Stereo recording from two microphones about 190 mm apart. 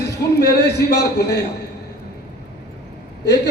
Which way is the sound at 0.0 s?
60° left (ahead or behind).